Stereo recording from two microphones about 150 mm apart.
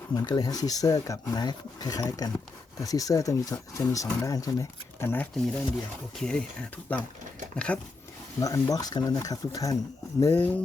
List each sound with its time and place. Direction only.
0.1 s speech: 25° left (ahead or behind); by 6.4 s 5° left (ahead or behind)
7.5 s speech: 5° left (ahead or behind)
8.4 s speech: 25° left (ahead or behind)